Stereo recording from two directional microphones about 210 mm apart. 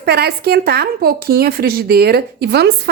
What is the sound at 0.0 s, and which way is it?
Speech, 50° right (ahead or behind).